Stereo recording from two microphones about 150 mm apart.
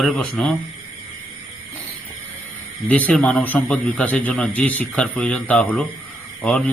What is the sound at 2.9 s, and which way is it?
Speech, 10° left (ahead or behind).